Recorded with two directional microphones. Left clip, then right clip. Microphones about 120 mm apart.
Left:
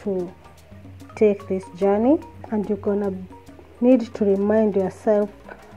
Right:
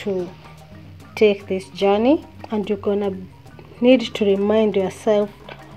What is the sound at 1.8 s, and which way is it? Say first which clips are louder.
Speech: right 2 dB; 10° left (ahead or behind).